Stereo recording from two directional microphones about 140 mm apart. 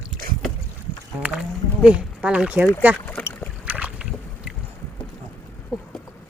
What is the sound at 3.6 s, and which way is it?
Boat, 10° right (ahead or behind).